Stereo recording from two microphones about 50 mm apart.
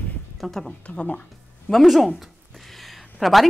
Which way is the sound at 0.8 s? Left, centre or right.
Left.